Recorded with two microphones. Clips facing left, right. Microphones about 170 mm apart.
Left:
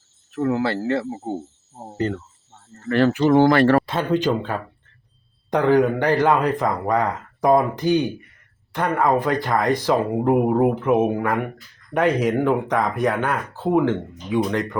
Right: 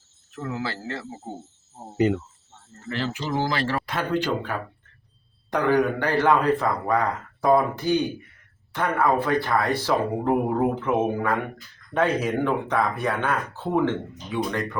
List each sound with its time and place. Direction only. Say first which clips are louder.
0.3 s speech: left 9 dB; 60° left (ahead or behind)
2.0 s speech: right 3 dB; 10° right (ahead or behind)
2.9 s speech: left 12 dB; 60° left (ahead or behind)
3.8 s speech: left 4 dB; 20° left (ahead or behind)